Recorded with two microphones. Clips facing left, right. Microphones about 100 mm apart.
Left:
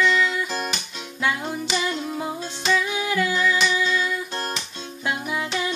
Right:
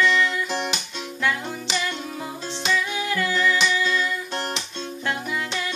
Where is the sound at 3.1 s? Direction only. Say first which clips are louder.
Even; 10° left (ahead or behind).